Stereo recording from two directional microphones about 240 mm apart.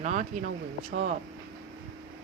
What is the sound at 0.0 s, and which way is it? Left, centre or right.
Speech, right.